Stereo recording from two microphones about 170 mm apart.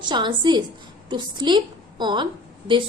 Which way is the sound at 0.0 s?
25° right (ahead or behind).